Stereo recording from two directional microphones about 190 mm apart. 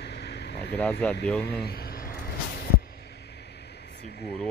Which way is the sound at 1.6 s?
55° left (ahead or behind).